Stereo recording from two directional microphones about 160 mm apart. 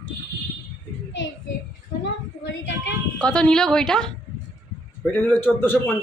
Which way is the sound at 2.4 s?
90° left.